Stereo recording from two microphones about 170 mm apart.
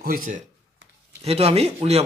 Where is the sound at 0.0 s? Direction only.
55° right (ahead or behind).